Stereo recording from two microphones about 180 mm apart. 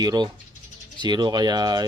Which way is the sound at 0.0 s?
20° right (ahead or behind).